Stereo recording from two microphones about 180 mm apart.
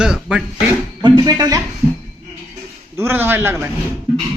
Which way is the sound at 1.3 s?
20° right (ahead or behind).